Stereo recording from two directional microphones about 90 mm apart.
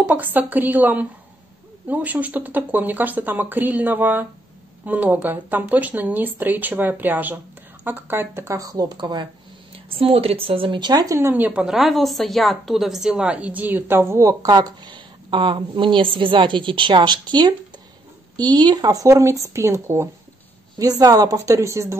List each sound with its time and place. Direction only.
0.0 s speech: 20° right (ahead or behind); by 8.9 s 40° right (ahead or behind)
8.9 s a woman's voice: 55° right (ahead or behind)
9.9 s speech: 90° right; by 11.1 s 45° right (ahead or behind)
11.1 s speech: 25° right (ahead or behind)
11.6 s a woman's voice: centre (ahead or behind); by 14.3 s 30° right (ahead or behind)
14.4 s a woman's voice: 45° right (ahead or behind); by 20.1 s 30° right (ahead or behind)
21.0 s speech: 45° right (ahead or behind)